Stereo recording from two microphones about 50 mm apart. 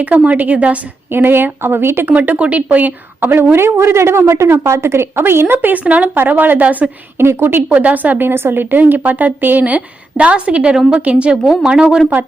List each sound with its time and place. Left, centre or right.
0.2 s a woman's voice: right
1.1 s speech: right
2.0 s a woman's voice: right
3.5 s a woman's voice: right
5.6 s a woman's voice: right
7.2 s speech: right
7.7 s a woman's voice: right
8.3 s a woman's voice: right
10.8 s speech: centre
11.0 s a woman's voice: right